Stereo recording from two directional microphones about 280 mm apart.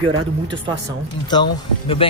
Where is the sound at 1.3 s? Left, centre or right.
Centre.